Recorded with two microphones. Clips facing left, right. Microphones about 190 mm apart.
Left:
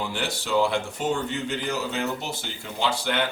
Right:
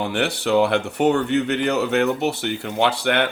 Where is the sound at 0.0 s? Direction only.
65° right (ahead or behind).